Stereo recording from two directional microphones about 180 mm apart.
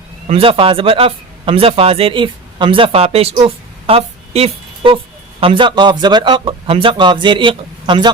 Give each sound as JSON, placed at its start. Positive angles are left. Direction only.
{"t": 0.3, "sound": "speech", "side_deg": -30}